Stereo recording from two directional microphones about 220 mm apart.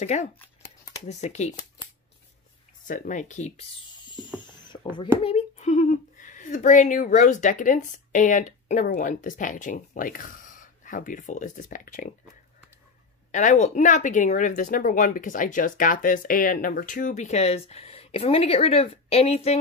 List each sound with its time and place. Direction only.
0.0 s speech: 30° left (ahead or behind)
2.9 s speech: 35° left (ahead or behind)
4.4 s a sound: 20° left (ahead or behind)
5.2 s speech: 30° left (ahead or behind)
13.3 s speech: 35° left (ahead or behind)